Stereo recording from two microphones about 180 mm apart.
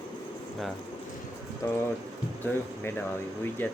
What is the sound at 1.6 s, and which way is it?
Speech, 20° left (ahead or behind).